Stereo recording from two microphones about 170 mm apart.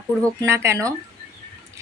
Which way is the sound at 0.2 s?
20° right (ahead or behind).